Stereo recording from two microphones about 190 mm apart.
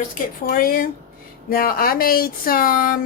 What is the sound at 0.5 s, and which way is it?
Speech, 50° left (ahead or behind).